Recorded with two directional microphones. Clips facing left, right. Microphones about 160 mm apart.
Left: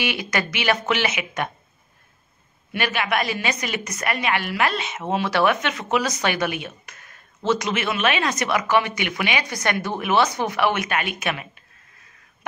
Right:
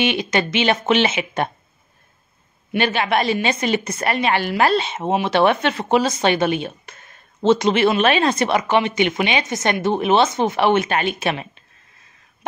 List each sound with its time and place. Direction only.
0.0 s speech: 25° right (ahead or behind)
2.7 s speech: 30° right (ahead or behind)